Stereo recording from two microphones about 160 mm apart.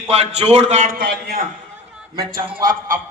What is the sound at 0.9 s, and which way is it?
A man's voice, 80° right.